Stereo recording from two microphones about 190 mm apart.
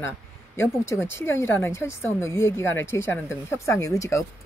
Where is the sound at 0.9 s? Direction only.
10° left (ahead or behind).